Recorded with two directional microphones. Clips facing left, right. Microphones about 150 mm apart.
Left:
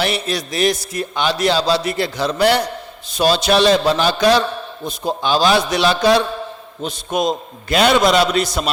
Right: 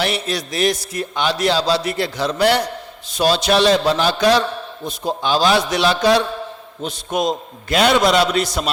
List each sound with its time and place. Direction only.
0.0 s a man's voice: 10° left (ahead or behind)